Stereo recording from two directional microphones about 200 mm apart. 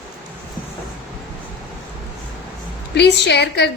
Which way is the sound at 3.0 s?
60° left (ahead or behind).